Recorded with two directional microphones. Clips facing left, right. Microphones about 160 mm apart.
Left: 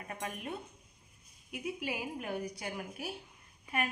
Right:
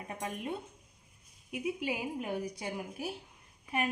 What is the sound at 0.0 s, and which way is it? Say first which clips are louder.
Speech: right 2 dB; 20° right (ahead or behind).